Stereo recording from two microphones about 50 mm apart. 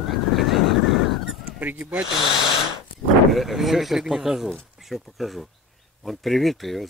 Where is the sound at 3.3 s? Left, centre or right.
Centre.